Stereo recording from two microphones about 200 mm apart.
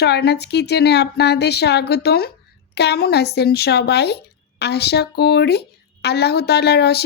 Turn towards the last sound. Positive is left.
turn(degrees=55)  # may be behind; listen again after turning